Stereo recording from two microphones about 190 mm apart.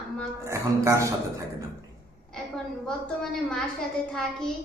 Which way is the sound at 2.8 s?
5° left (ahead or behind).